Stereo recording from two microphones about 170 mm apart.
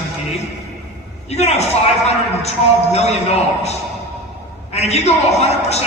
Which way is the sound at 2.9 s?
40° left (ahead or behind).